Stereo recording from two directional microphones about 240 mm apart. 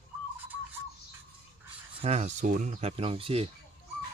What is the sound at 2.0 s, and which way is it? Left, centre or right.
Speech, right.